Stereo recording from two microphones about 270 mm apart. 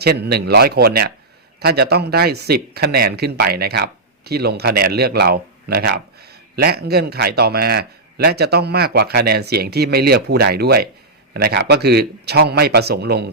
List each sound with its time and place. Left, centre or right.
0.0 s speech: right